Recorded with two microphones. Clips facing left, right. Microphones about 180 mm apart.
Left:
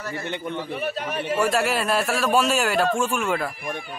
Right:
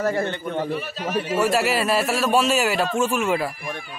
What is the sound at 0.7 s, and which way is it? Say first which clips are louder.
Speech: right 1 dB; 55° left (ahead or behind).